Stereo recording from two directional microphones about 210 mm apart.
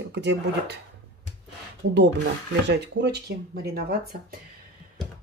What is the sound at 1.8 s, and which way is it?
Speech, 55° right (ahead or behind).